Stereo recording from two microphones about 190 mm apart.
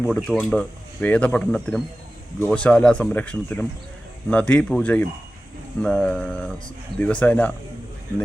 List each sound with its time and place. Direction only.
0.0 s speech: 5° left (ahead or behind)